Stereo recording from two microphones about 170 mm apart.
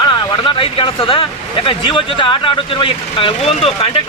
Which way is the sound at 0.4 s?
30° left (ahead or behind).